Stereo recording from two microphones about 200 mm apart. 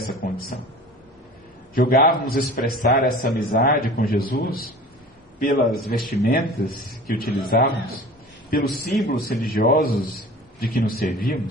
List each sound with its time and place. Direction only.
0.0 s speech: 50° left (ahead or behind)
1.8 s a man's voice: 45° left (ahead or behind)